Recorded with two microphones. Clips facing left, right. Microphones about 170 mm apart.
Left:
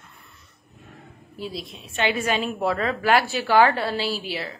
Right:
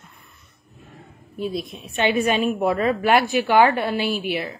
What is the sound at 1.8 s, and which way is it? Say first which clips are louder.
Speech: right 4 dB; 20° right (ahead or behind).